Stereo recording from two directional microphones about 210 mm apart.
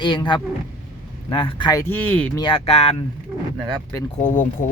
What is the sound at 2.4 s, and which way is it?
Speech, 25° left (ahead or behind).